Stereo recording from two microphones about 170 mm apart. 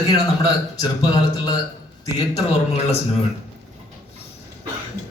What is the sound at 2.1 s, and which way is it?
Speech, 40° left (ahead or behind).